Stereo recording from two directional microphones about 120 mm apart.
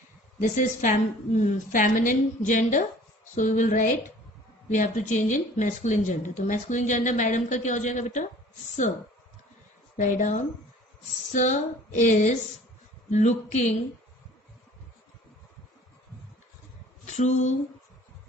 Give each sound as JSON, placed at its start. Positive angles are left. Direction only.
{"t": 0.3, "sound": "a woman's voice", "side_deg": 90}
{"t": 10.0, "sound": "a woman's voice", "side_deg": 90}
{"t": 13.1, "sound": "speech", "side_deg": 75}
{"t": 17.1, "sound": "speech", "side_deg": 75}